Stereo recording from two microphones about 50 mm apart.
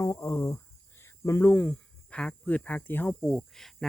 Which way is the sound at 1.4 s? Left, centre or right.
Left.